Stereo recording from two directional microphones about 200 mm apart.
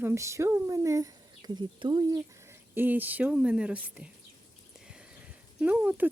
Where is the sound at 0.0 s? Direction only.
15° right (ahead or behind).